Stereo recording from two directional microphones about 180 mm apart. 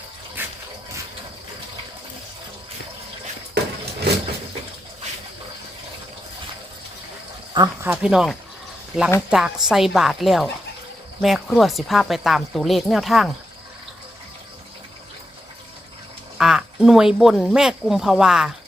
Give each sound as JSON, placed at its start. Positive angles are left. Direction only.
{"t": 0.4, "sound": "a sound", "side_deg": -10}
{"t": 7.5, "sound": "speech", "side_deg": -25}
{"t": 7.9, "sound": "speech", "side_deg": -5}
{"t": 16.4, "sound": "speech", "side_deg": -5}